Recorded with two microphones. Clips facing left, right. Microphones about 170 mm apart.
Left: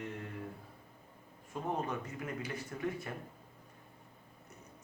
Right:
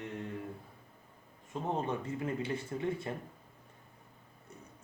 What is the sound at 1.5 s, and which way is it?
Speech, 30° right (ahead or behind).